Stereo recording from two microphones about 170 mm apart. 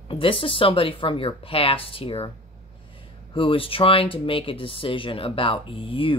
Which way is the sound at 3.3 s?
30° left (ahead or behind).